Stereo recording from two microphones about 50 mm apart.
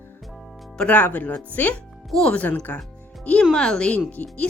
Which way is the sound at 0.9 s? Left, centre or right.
Left.